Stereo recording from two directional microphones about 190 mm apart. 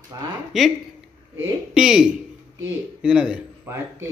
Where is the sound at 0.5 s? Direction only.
5° right (ahead or behind).